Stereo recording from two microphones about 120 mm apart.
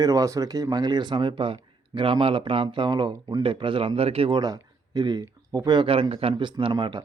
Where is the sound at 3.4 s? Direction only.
45° right (ahead or behind).